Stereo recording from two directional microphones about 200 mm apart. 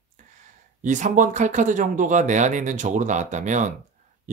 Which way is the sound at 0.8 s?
40° right (ahead or behind).